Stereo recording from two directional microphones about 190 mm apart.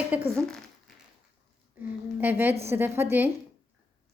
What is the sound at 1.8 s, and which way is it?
A woman's voice, 10° right (ahead or behind).